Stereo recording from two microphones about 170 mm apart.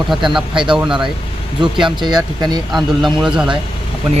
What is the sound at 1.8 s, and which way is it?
Speech, 25° right (ahead or behind).